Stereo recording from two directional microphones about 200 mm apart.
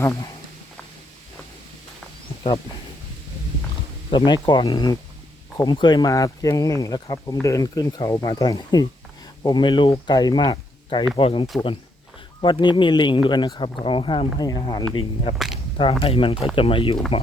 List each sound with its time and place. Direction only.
4.1 s speech: 20° left (ahead or behind)